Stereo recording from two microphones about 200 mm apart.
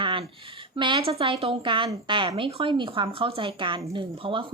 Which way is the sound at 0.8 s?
25° right (ahead or behind).